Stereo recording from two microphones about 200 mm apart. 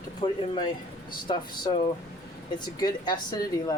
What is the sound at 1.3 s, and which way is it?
Speech, 20° left (ahead or behind).